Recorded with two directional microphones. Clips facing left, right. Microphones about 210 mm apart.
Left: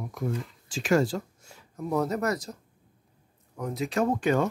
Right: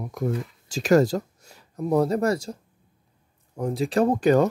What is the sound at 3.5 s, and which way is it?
Speech, 30° right (ahead or behind).